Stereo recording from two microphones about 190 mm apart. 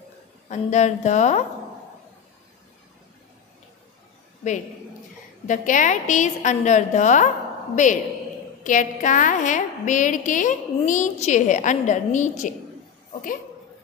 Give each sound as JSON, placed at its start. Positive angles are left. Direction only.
{"t": 0.5, "sound": "a woman's voice", "side_deg": 40}
{"t": 5.5, "sound": "a woman's voice", "side_deg": 40}